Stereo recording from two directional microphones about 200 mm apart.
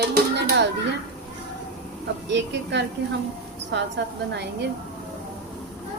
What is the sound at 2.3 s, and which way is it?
Speech, 60° right (ahead or behind).